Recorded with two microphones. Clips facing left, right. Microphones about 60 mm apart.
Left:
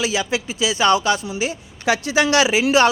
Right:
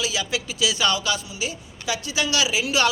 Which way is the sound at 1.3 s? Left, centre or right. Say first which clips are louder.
Left 6 dB; left.